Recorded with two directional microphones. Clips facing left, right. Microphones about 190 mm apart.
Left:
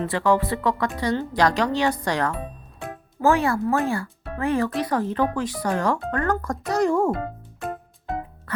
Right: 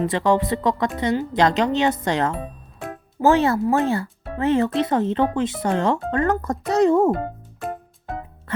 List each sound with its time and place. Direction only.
0.0 s speech: 20° right (ahead or behind)